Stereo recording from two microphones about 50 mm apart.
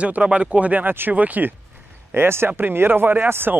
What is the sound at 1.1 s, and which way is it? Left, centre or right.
Speech, right.